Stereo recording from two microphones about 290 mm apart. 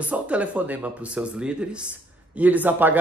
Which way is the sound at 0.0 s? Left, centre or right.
Centre.